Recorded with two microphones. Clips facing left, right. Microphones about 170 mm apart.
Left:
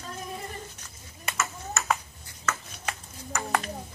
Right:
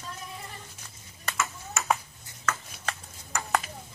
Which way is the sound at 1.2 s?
5° left (ahead or behind).